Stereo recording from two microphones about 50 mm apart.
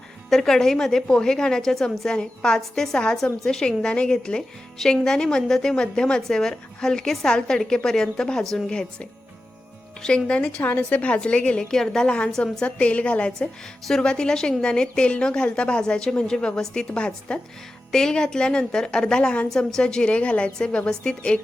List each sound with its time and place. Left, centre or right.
0.3 s a woman's voice: centre
10.2 s a woman's voice: centre
10.6 s a woman's voice: left; by 21.3 s centre